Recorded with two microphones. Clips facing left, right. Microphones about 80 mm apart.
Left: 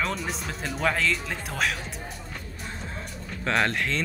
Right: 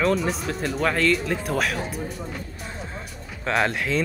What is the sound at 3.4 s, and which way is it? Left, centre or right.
Speech, centre.